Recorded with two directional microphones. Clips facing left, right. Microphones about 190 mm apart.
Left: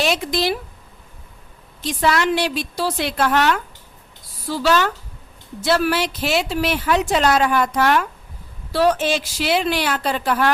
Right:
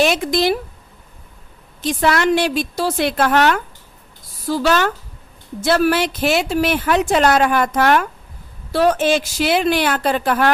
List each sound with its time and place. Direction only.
0.0 s speech: 50° right (ahead or behind)
1.8 s a woman's voice: 50° right (ahead or behind)